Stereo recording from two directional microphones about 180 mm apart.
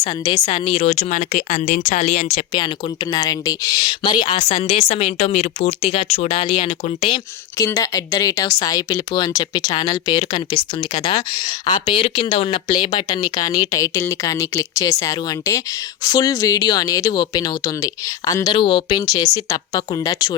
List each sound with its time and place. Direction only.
0.0 s a woman's voice: 30° left (ahead or behind)
3.1 s a woman's voice: 20° left (ahead or behind)
7.6 s speech: 20° left (ahead or behind)